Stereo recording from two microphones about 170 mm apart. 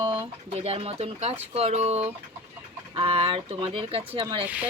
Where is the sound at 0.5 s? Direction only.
35° right (ahead or behind).